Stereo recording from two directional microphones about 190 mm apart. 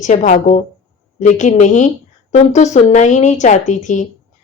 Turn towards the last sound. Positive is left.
turn(degrees=40)  # may be behind; listen again after turning